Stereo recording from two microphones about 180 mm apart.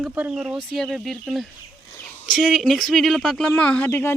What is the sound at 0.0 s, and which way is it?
Speech, 5° right (ahead or behind).